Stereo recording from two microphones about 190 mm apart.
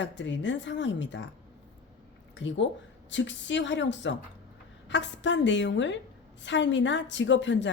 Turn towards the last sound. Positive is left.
turn(degrees=70)  # may be behind; listen again after turning